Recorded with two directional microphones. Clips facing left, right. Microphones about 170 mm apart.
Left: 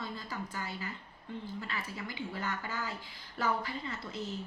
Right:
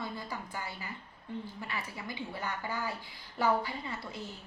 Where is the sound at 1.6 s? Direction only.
15° right (ahead or behind).